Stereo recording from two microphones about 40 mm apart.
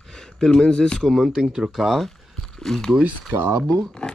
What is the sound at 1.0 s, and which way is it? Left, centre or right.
Speech, centre.